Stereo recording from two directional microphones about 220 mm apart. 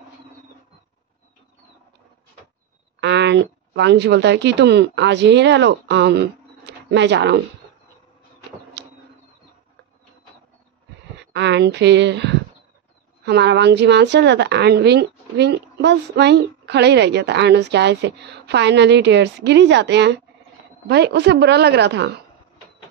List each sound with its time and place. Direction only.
3.0 s a woman's voice: 50° right (ahead or behind)
8.8 s a sound: 50° right (ahead or behind)
11.1 s a woman's voice: 50° right (ahead or behind)